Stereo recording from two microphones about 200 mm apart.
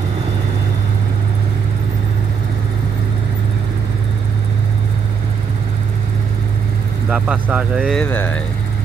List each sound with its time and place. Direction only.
7.1 s speech: 5° right (ahead or behind)
7.8 s speech: 5° left (ahead or behind)